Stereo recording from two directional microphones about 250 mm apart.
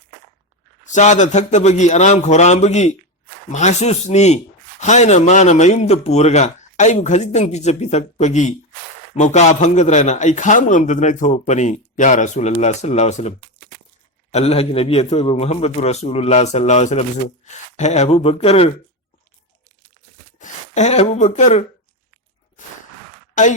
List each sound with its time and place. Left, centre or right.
0.9 s a man's voice: left
20.4 s speech: left
23.3 s speech: left